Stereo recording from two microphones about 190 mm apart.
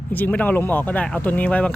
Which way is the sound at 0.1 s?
10° left (ahead or behind).